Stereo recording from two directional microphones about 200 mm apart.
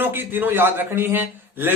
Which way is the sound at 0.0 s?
10° right (ahead or behind).